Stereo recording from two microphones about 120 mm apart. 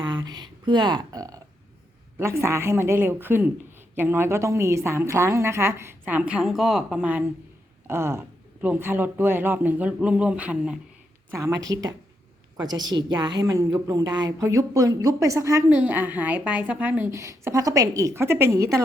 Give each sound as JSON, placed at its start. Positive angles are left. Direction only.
{"t": 0.3, "sound": "a woman's voice", "side_deg": -40}
{"t": 7.0, "sound": "a woman's voice", "side_deg": -15}
{"t": 11.3, "sound": "a woman's voice", "side_deg": -25}
{"t": 15.7, "sound": "speech", "side_deg": -15}
{"t": 17.1, "sound": "a woman's voice", "side_deg": -25}